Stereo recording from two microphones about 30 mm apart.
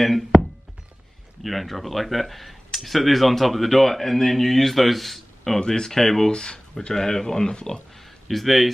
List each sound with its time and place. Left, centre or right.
0.0 s thunk: centre
1.4 s speech: centre
5.6 s speech: centre
6.3 s speech: left
6.9 s speech: centre
8.0 s a sound: centre